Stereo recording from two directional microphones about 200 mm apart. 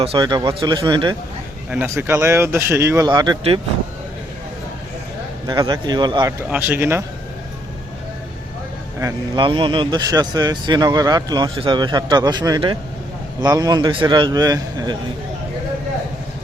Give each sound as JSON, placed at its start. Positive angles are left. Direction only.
{"t": 0.0, "sound": "speech", "side_deg": -25}
{"t": 1.7, "sound": "speech", "side_deg": -10}
{"t": 5.5, "sound": "speech", "side_deg": -20}
{"t": 6.4, "sound": "speech", "side_deg": -10}
{"t": 9.0, "sound": "speech", "side_deg": -20}